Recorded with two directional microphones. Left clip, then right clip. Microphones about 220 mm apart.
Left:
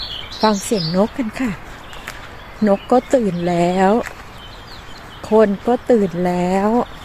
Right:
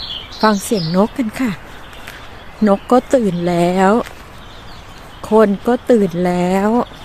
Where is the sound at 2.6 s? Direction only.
15° right (ahead or behind).